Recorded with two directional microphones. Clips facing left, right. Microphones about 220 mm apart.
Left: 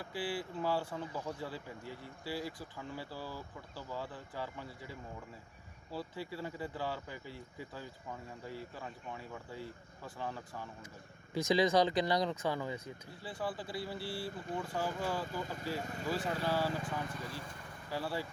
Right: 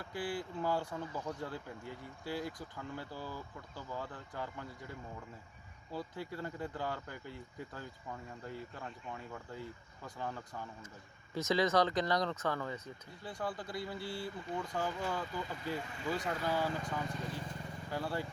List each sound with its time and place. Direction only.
0.1 s speech: 5° left (ahead or behind)
15.8 s speech: 45° left (ahead or behind)
16.1 s speech: 5° left (ahead or behind)